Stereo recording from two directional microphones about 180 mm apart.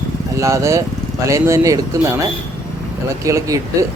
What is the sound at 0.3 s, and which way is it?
Speech, 15° right (ahead or behind).